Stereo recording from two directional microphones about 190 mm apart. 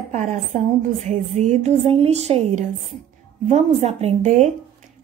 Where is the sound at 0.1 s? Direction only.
40° right (ahead or behind).